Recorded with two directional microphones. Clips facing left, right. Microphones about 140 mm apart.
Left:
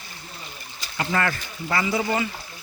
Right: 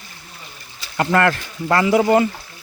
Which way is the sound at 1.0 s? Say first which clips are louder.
Right 8 dB; 65° right (ahead or behind).